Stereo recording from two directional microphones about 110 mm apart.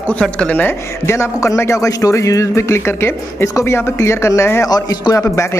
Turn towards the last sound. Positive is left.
turn(degrees=25)  # may be behind; listen again after turning